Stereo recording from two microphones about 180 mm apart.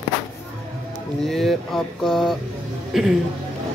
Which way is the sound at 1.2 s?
Centre (ahead or behind).